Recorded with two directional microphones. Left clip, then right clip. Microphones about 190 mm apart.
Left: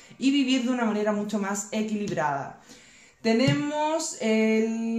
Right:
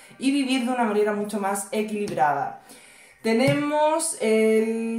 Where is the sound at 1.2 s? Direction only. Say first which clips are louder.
Right 4 dB; 45° left (ahead or behind).